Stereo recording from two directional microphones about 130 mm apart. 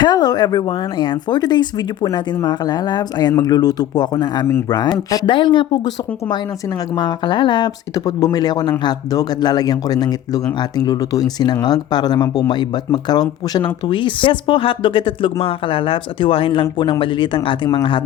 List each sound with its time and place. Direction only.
0.0 s speech: 30° left (ahead or behind)